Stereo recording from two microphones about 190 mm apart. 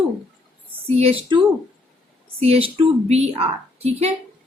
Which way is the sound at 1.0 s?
30° right (ahead or behind).